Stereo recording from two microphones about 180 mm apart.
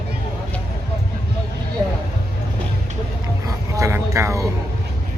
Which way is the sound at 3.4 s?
15° right (ahead or behind).